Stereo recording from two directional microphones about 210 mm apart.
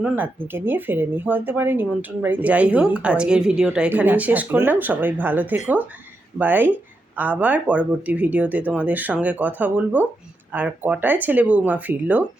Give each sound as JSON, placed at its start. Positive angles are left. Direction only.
{"t": 0.0, "sound": "speech", "side_deg": -10}